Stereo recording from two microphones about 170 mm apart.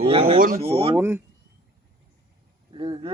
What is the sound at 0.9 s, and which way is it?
Speech, 15° right (ahead or behind).